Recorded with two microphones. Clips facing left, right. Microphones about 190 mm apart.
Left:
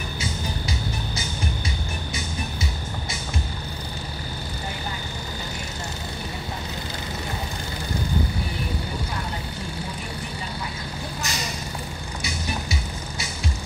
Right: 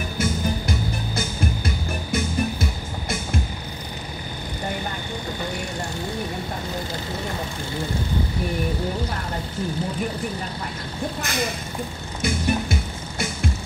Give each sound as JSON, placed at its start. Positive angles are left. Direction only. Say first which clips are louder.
{"t": 0.2, "sound": "music", "louder": "right 8 dB", "side_deg": -55}
{"t": 11.2, "sound": "vehicle", "louder": "right 6 dB", "side_deg": -55}
{"t": 12.2, "sound": "music", "louder": "right 9 dB", "side_deg": -55}